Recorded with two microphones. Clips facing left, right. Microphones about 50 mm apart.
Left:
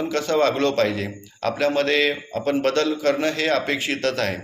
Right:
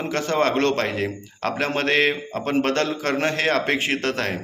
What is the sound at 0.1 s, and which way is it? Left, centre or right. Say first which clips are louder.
Speech: even; right.